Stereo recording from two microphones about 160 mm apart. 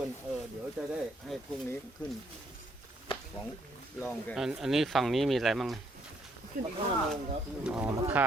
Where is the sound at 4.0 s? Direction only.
15° left (ahead or behind).